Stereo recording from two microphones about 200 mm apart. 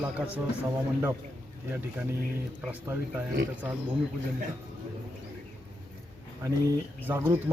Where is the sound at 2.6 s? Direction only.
10° right (ahead or behind).